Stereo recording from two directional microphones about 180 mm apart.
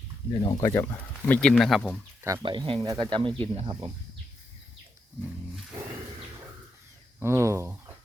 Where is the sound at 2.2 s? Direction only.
25° right (ahead or behind).